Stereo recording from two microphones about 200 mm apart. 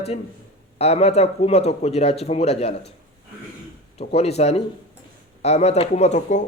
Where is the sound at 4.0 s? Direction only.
30° left (ahead or behind).